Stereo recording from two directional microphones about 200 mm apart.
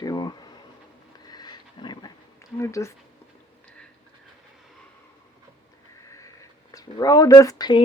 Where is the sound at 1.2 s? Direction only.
20° left (ahead or behind).